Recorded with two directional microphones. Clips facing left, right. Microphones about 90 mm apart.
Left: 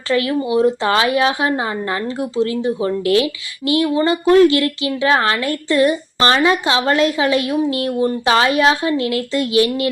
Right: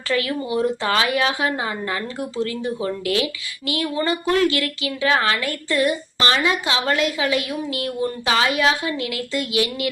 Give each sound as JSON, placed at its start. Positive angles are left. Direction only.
{"t": 0.1, "sound": "a woman's voice", "side_deg": 25}